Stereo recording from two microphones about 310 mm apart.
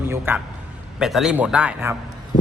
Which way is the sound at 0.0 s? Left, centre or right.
Centre.